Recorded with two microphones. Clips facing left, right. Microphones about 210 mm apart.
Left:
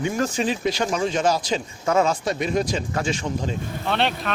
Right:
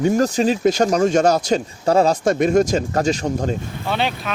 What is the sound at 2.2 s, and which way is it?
Speech, 50° right (ahead or behind).